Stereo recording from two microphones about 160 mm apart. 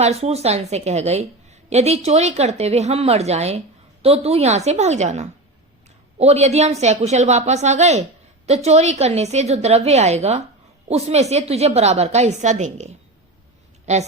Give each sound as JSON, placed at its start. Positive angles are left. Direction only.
{"t": 0.0, "sound": "a woman's voice", "side_deg": -40}